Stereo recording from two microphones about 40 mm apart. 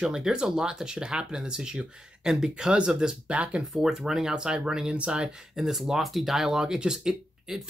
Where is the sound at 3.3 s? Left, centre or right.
Right.